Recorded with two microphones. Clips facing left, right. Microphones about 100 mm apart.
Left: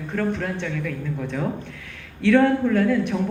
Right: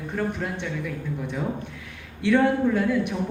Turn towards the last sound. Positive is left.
turn(degrees=-10)  # may be behind; listen again after turning